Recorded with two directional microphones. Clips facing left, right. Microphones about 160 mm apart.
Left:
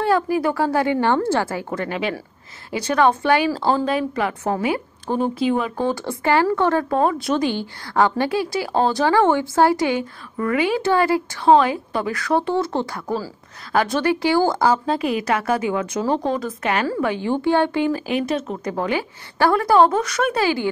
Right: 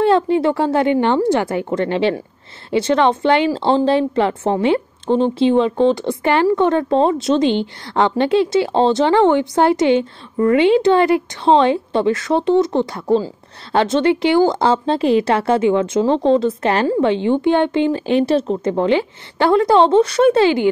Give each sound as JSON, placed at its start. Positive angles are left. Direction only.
{"t": 0.0, "sound": "speech", "side_deg": -25}